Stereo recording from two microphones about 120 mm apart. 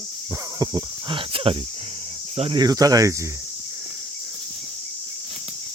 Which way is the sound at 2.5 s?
35° right (ahead or behind).